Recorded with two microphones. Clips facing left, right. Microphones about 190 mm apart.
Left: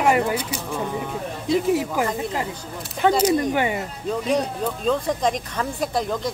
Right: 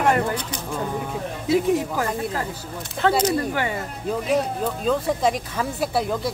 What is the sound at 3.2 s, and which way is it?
Speech, 15° left (ahead or behind).